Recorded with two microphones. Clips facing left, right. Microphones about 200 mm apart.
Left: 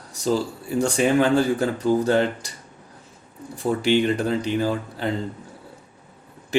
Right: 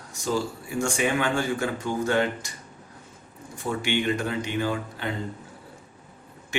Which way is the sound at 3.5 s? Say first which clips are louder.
Left 7 dB; 35° left (ahead or behind).